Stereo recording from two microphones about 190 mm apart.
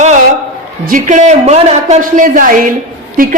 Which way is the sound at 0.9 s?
40° right (ahead or behind).